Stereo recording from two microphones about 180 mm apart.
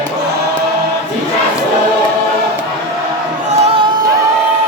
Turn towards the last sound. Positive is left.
turn(degrees=-30)  # may be behind; listen again after turning